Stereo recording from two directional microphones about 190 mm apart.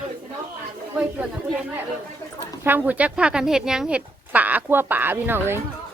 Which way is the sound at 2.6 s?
10° right (ahead or behind).